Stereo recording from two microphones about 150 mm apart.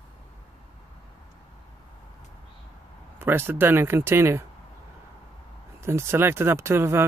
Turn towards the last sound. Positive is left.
turn(degrees=-15)  # may be behind; listen again after turning